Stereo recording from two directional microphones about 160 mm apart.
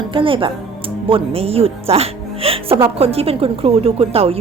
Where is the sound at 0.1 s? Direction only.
30° right (ahead or behind).